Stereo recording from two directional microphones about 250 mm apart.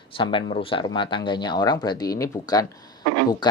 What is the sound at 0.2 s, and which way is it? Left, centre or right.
Speech, centre.